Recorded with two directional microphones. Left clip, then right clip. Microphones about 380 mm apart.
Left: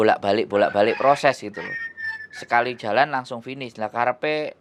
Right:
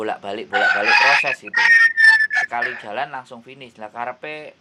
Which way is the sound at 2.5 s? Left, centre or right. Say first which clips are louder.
Left 3 dB; left.